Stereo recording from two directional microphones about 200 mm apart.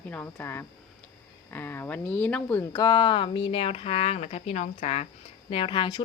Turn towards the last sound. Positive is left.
turn(degrees=25)  # may be behind; listen again after turning